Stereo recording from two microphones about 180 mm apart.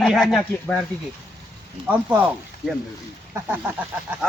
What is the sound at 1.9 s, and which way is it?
Speech, 10° right (ahead or behind).